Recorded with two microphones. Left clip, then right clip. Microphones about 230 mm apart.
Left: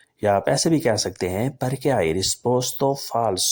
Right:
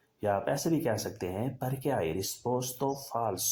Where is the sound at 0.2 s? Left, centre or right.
Left.